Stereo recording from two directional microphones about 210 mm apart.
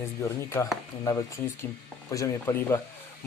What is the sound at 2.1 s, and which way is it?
Speech, 15° left (ahead or behind).